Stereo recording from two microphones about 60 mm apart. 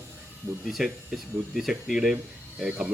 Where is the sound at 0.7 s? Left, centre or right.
Centre.